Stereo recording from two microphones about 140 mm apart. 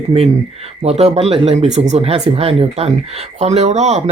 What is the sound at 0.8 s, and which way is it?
Speech, 50° right (ahead or behind).